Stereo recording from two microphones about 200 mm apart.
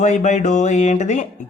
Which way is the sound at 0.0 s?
35° left (ahead or behind).